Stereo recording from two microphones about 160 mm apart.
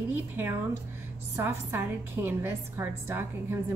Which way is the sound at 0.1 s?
15° right (ahead or behind).